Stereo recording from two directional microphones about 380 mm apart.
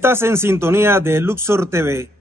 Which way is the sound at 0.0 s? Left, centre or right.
Centre.